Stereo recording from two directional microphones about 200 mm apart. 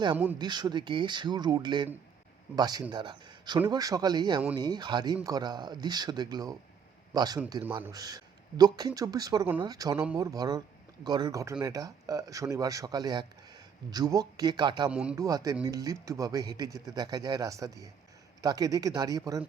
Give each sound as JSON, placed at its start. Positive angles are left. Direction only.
{"t": 0.3, "sound": "speech", "side_deg": -20}
{"t": 14.8, "sound": "speech", "side_deg": -5}
{"t": 15.1, "sound": "speech", "side_deg": -15}